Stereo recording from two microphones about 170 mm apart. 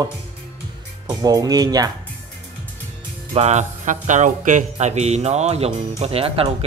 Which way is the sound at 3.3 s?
40° right (ahead or behind).